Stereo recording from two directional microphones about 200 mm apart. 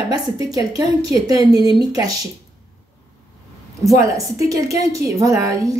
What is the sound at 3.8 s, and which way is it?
A woman's voice, 15° right (ahead or behind).